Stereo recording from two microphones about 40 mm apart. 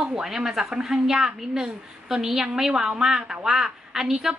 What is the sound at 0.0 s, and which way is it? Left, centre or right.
A woman's voice, centre.